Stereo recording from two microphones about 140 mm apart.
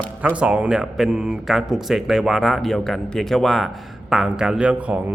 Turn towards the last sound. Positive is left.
turn(degrees=-10)  # may be behind; listen again after turning